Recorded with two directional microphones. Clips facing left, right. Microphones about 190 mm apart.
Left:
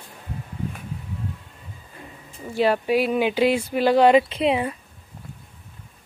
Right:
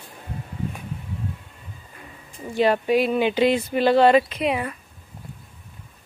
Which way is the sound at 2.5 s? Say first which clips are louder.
Right 1 dB; 5° left (ahead or behind).